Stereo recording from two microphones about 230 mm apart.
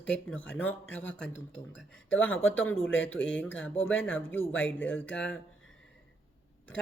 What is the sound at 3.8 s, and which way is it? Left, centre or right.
Speech, left.